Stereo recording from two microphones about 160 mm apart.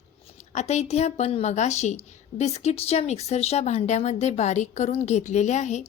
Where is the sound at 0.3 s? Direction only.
45° left (ahead or behind).